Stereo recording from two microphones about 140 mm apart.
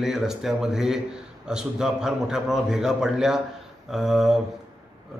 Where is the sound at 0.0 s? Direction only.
Centre (ahead or behind).